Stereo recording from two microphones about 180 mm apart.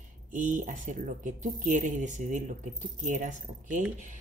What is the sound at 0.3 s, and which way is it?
Speech, 45° right (ahead or behind).